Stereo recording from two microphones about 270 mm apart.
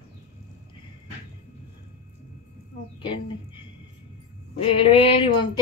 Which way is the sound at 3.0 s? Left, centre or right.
Centre.